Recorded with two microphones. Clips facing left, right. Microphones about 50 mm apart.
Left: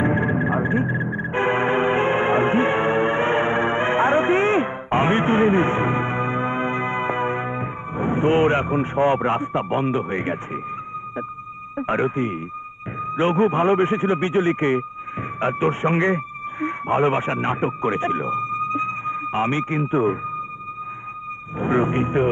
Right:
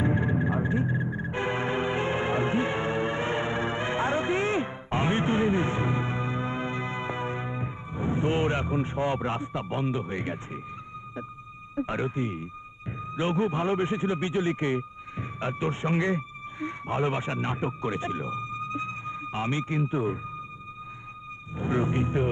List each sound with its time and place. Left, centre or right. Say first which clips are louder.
0.0 s music: left 6 dB; left
11.7 s speech: left 7 dB; left
21.5 s speech: left 7 dB; left